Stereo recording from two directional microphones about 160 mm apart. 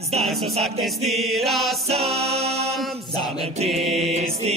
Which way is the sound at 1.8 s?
40° right (ahead or behind).